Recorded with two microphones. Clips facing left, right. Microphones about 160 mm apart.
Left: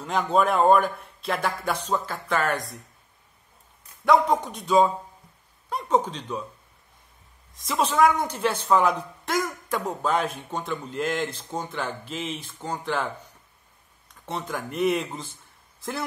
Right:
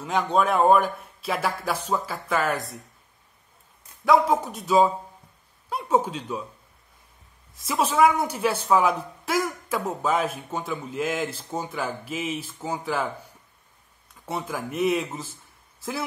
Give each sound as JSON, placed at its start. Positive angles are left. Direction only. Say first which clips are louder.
{"t": 0.0, "sound": "speech", "louder": "even", "side_deg": 0}
{"t": 4.0, "sound": "speech", "louder": "even", "side_deg": 0}
{"t": 7.6, "sound": "a woman's voice", "louder": "right 1 dB", "side_deg": -5}
{"t": 14.2, "sound": "speech", "louder": "right 1 dB", "side_deg": -10}